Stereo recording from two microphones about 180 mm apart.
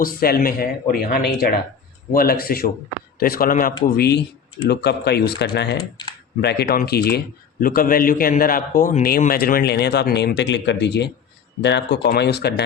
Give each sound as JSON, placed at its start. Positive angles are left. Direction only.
{"t": 0.0, "sound": "a man's voice", "side_deg": 55}
{"t": 3.8, "sound": "a man's voice", "side_deg": 60}